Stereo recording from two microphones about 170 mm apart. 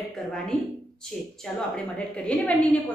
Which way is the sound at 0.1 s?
5° left (ahead or behind).